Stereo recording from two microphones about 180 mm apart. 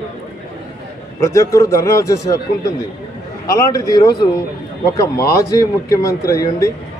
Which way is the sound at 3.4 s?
20° left (ahead or behind).